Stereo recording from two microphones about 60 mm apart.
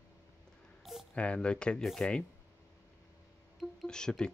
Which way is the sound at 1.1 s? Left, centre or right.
Centre.